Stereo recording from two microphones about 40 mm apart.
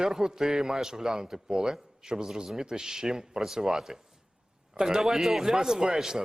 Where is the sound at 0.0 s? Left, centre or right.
Centre.